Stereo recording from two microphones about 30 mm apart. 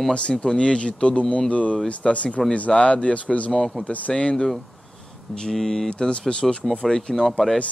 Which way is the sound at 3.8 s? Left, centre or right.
Left.